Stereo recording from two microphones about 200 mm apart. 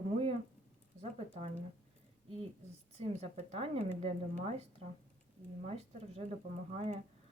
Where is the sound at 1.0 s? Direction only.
30° right (ahead or behind).